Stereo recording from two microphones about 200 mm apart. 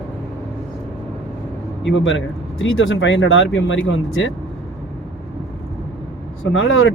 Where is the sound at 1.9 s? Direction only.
70° left (ahead or behind).